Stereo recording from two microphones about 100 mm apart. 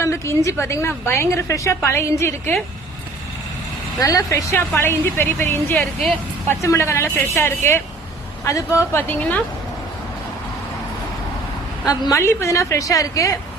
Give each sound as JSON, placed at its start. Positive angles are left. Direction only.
{"t": 0.0, "sound": "a woman's voice", "side_deg": 30}
{"t": 4.0, "sound": "a woman's voice", "side_deg": 35}
{"t": 4.5, "sound": "a woman's voice", "side_deg": 20}
{"t": 11.9, "sound": "a woman's voice", "side_deg": 40}